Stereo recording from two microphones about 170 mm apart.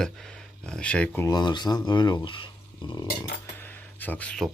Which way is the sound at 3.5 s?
10° left (ahead or behind).